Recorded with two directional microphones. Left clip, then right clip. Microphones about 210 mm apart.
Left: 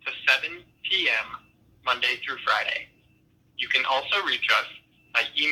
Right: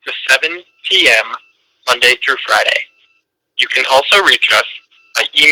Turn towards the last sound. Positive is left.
turn(degrees=-50)  # may be behind; listen again after turning